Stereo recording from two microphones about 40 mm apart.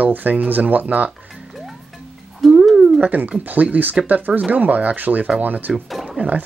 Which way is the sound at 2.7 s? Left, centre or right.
Centre.